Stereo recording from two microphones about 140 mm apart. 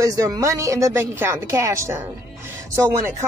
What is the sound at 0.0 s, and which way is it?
Speech, 25° right (ahead or behind).